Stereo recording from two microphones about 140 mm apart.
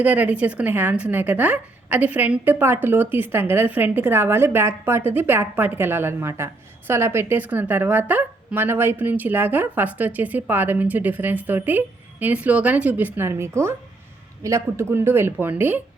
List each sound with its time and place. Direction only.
0.0 s speech: 10° right (ahead or behind)